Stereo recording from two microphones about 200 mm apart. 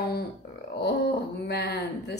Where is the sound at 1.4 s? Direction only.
55° left (ahead or behind).